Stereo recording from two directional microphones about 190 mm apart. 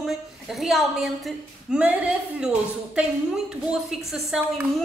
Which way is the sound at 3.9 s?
Centre (ahead or behind).